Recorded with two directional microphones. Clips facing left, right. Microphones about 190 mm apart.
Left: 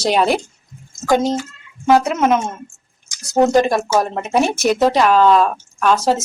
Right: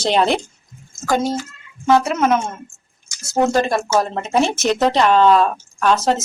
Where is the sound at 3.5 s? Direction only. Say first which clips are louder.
Left 3 dB; 15° left (ahead or behind).